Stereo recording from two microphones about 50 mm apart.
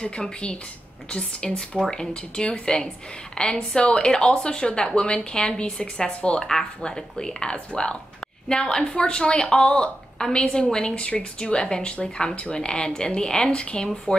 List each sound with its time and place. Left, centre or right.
0.0 s a woman's voice: centre